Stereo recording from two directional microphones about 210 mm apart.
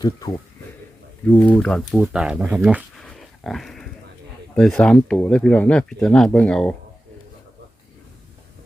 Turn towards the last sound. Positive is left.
turn(degrees=5)  # may be behind; listen again after turning